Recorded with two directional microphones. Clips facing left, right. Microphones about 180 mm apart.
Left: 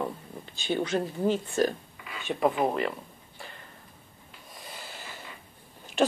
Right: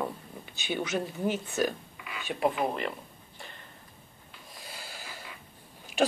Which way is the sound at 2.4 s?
40° left (ahead or behind).